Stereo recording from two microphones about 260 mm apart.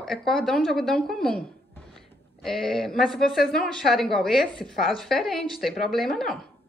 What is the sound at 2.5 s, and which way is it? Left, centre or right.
Speech, centre.